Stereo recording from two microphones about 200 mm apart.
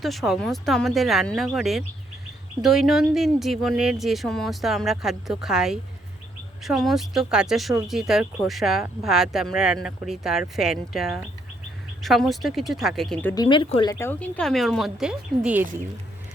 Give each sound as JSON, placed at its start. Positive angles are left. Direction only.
{"t": 0.0, "sound": "speech", "side_deg": 0}
{"t": 13.3, "sound": "speech", "side_deg": 20}
{"t": 14.0, "sound": "speech", "side_deg": 10}